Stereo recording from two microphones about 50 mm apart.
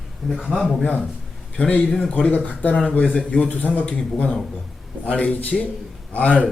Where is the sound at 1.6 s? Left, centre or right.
Left.